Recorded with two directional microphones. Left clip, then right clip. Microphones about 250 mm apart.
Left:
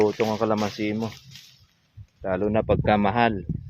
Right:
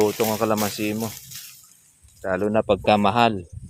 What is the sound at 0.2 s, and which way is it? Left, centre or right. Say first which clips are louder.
Speech: right 2 dB; centre.